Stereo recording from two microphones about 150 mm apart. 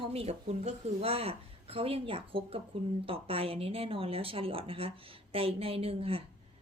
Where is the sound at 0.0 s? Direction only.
40° right (ahead or behind).